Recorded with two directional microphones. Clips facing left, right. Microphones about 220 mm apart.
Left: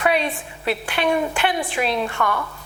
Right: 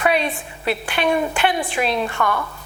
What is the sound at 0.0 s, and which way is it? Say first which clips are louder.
A woman's voice: right 1 dB; 15° right (ahead or behind).